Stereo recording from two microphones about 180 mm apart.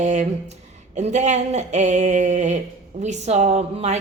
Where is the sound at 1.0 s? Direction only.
40° right (ahead or behind).